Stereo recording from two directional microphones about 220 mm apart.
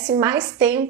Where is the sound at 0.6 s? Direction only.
5° right (ahead or behind).